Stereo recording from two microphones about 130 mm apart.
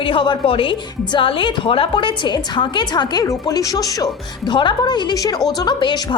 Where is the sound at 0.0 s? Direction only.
40° left (ahead or behind).